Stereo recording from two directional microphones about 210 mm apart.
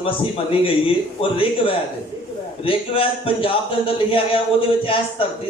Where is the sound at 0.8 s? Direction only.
25° left (ahead or behind).